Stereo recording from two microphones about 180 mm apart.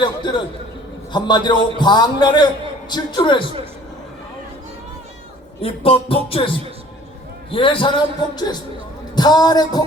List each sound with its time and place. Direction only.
0.0 s a man's voice: 25° left (ahead or behind)
5.6 s a sound: 30° left (ahead or behind)
6.2 s a man's voice: 30° left (ahead or behind)